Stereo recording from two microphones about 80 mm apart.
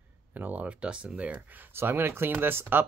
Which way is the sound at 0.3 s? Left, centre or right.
Right.